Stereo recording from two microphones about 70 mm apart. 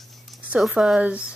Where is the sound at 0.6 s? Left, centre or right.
Centre.